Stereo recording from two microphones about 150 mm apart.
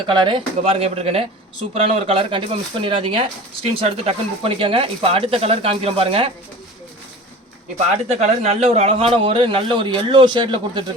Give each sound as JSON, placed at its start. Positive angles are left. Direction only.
{"t": 0.1, "sound": "speech", "side_deg": -30}
{"t": 8.1, "sound": "speech", "side_deg": -45}